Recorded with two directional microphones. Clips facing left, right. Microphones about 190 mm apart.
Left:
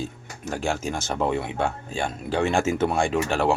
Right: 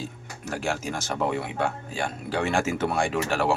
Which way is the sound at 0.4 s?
25° left (ahead or behind).